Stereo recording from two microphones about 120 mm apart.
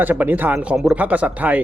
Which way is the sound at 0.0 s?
15° right (ahead or behind).